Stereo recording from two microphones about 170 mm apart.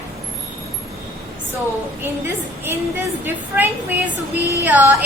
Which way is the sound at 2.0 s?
15° right (ahead or behind).